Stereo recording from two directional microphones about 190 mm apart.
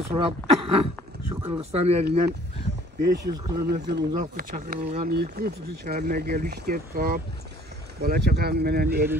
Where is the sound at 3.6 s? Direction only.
60° right (ahead or behind).